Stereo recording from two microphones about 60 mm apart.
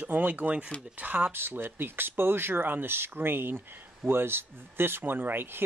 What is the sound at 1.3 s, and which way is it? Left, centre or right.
Speech, right.